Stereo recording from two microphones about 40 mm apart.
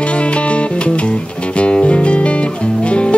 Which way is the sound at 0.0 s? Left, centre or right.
Left.